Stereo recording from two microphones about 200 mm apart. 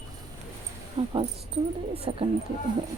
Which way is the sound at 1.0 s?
30° right (ahead or behind).